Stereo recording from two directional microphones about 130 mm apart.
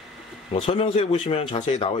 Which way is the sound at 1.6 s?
60° left (ahead or behind).